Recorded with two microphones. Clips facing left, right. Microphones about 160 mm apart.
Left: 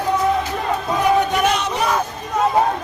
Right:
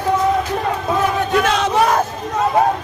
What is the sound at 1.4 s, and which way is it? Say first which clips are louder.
Battle cry: right 2 dB; 90° right.